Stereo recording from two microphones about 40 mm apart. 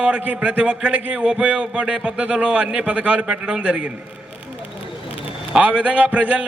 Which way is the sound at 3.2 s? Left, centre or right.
Right.